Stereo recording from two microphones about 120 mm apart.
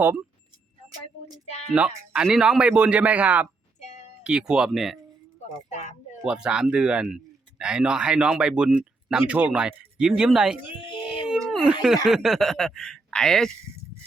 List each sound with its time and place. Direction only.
1.5 s a sound: 65° left (ahead or behind)
1.7 s speech: 10° right (ahead or behind)
5.6 s speech: 80° left
6.2 s speech: 5° right (ahead or behind)
10.8 s a sound: 40° left (ahead or behind)
11.5 s speech: 5° right (ahead or behind)